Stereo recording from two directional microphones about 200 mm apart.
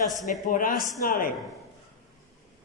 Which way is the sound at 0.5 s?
40° left (ahead or behind).